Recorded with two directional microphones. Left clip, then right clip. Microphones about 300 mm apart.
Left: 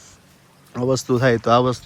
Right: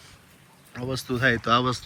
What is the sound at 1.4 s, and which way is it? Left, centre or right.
Speech, centre.